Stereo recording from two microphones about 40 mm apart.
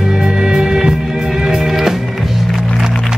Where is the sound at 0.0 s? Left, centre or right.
Centre.